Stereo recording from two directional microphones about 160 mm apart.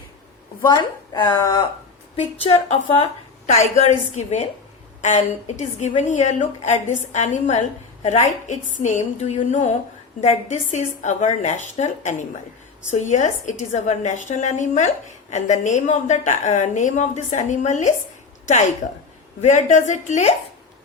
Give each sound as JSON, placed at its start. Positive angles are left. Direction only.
{"t": 0.6, "sound": "speech", "side_deg": 25}
{"t": 2.1, "sound": "a woman's voice", "side_deg": 40}
{"t": 19.4, "sound": "a woman's voice", "side_deg": 45}